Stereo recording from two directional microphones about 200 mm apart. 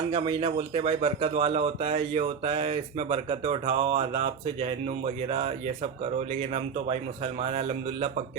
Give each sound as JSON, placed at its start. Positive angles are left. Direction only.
{"t": 0.1, "sound": "speech", "side_deg": -25}